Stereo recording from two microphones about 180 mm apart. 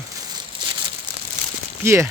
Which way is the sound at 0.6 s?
25° right (ahead or behind).